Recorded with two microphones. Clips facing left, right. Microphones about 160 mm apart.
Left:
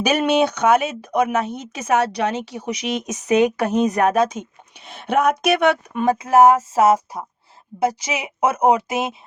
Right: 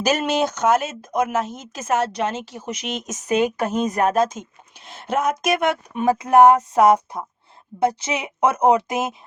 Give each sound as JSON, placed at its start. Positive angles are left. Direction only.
{"t": 0.0, "sound": "speech", "side_deg": 60}
{"t": 6.3, "sound": "a woman's voice", "side_deg": 5}